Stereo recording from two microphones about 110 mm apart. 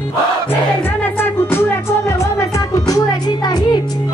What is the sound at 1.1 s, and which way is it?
Music, 20° left (ahead or behind).